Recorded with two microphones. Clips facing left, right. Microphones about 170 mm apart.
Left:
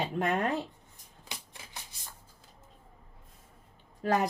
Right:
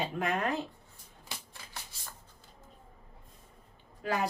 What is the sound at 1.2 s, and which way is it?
Shuffling cards, 20° left (ahead or behind).